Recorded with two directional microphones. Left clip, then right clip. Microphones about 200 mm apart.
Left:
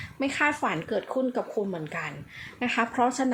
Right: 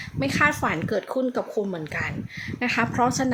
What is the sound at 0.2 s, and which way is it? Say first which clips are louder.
Speech: right 4 dB; 15° right (ahead or behind).